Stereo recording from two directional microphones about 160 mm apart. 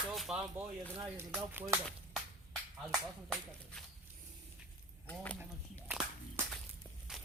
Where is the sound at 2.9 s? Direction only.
Centre (ahead or behind).